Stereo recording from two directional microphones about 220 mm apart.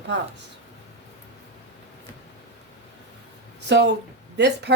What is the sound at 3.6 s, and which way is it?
Speech, 50° right (ahead or behind).